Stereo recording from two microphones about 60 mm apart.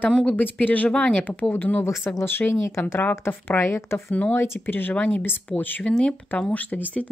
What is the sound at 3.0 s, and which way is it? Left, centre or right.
Speech, left.